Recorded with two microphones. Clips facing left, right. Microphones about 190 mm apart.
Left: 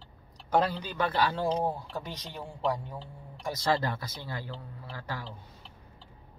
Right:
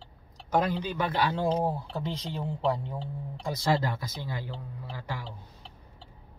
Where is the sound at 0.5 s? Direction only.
10° right (ahead or behind).